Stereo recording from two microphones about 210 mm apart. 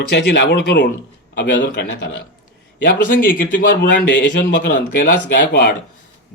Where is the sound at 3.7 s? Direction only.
60° left (ahead or behind).